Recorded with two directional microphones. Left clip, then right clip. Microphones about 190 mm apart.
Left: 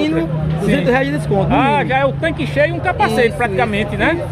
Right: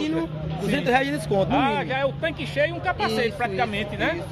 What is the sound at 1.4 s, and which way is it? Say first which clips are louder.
Speech: left 8 dB; 5° left (ahead or behind).